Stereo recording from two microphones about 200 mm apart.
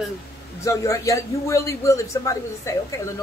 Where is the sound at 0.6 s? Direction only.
15° left (ahead or behind).